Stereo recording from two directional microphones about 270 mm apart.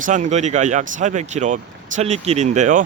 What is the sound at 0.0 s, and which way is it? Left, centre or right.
Speech, right.